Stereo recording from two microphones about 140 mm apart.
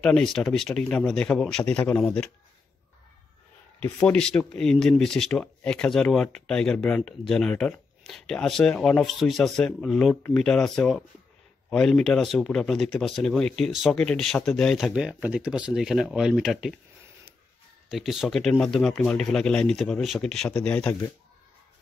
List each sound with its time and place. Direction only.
0.0 s speech: 5° left (ahead or behind)
3.8 s speech: 5° left (ahead or behind)
17.8 s speech: centre (ahead or behind)